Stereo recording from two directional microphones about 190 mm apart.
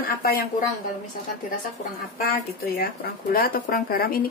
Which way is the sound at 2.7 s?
50° left (ahead or behind).